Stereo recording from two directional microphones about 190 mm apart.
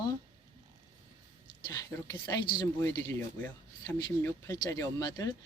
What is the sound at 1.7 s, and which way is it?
Speech, 15° left (ahead or behind).